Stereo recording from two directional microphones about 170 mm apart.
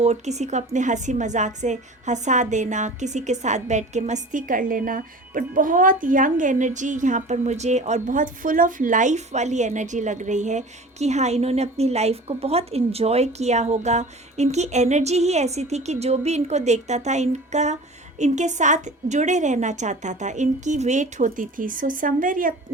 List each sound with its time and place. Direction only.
0.0 s a woman's voice: 40° right (ahead or behind)